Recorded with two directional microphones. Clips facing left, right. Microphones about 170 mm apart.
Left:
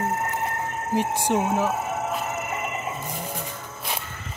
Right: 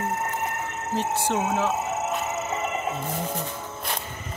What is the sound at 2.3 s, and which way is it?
Music, 25° right (ahead or behind).